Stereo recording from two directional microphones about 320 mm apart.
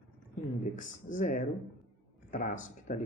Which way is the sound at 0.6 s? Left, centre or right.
Left.